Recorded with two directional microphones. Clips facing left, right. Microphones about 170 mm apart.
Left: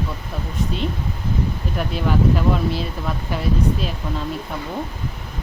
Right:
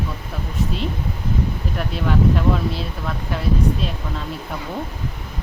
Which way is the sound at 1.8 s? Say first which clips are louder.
Left 1 dB; centre (ahead or behind).